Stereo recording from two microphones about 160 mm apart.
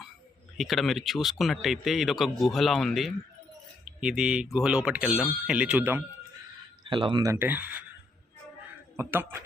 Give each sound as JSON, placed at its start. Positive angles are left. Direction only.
{"t": 0.5, "sound": "speech", "side_deg": 0}
{"t": 6.8, "sound": "speech", "side_deg": -30}
{"t": 9.0, "sound": "speech", "side_deg": -15}